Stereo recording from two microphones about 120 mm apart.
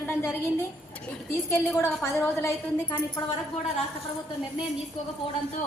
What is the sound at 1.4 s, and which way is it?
A woman's voice, 25° left (ahead or behind).